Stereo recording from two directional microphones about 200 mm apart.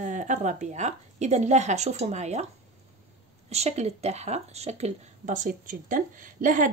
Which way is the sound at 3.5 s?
30° right (ahead or behind).